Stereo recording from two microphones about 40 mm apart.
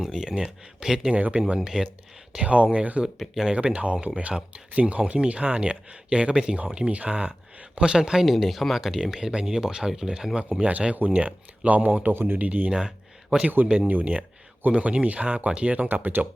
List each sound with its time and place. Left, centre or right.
0.0 s speech: centre
1.1 s speech: right
1.5 s speech: centre
2.4 s speech: right
3.2 s speech: centre
3.6 s speech: right
8.2 s speech: centre
9.0 s speech: centre
10.6 s speech: right
12.1 s speech: right
12.4 s speech: right
15.9 s speech: right